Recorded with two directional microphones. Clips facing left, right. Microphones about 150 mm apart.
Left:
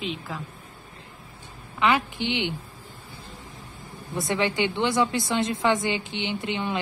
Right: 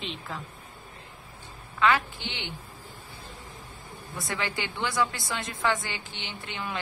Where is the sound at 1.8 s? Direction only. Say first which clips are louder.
Left 2 dB; 20° left (ahead or behind).